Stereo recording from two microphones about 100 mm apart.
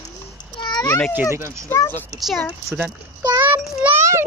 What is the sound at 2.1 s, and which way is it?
Speech, centre (ahead or behind).